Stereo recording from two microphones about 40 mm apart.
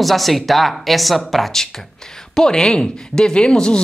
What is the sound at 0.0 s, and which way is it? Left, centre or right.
Speech, centre.